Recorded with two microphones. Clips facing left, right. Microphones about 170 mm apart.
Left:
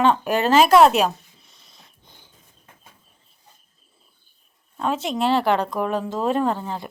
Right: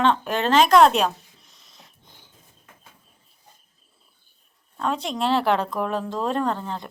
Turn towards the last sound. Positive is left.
turn(degrees=10)  # may be behind; listen again after turning